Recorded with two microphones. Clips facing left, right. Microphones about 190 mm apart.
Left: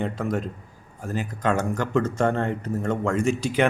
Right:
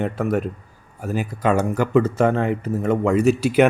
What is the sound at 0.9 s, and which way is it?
Speech, 10° right (ahead or behind).